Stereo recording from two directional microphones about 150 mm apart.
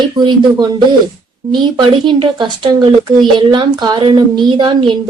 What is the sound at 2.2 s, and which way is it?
Speech, 30° right (ahead or behind).